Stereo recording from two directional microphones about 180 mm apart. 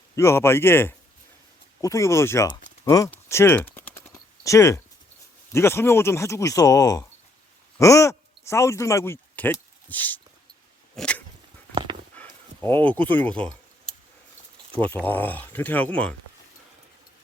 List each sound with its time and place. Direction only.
0.2 s speech: 15° left (ahead or behind)
10.9 s dog: 5° left (ahead or behind)
11.7 s a sound: 25° right (ahead or behind)
12.1 s speech: 10° left (ahead or behind)
14.8 s speech: 10° left (ahead or behind)